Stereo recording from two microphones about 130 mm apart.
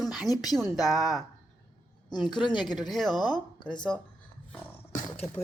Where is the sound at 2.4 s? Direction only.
35° left (ahead or behind).